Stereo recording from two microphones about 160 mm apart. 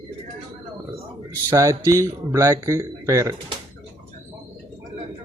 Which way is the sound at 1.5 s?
20° right (ahead or behind).